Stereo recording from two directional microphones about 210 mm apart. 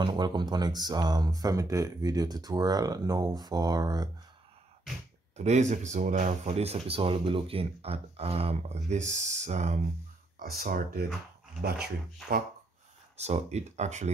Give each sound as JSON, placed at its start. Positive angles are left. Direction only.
{"t": 0.0, "sound": "speech", "side_deg": -20}
{"t": 5.3, "sound": "speech", "side_deg": -30}
{"t": 10.4, "sound": "speech", "side_deg": -45}
{"t": 13.2, "sound": "speech", "side_deg": -30}